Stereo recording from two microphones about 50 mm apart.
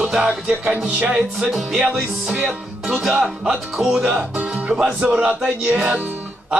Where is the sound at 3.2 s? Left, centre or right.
Centre.